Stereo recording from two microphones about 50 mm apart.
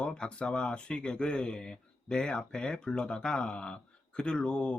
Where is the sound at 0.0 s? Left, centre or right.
Centre.